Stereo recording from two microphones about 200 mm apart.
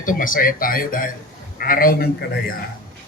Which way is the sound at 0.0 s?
40° left (ahead or behind).